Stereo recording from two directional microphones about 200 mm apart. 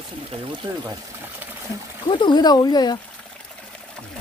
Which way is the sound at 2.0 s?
20° left (ahead or behind).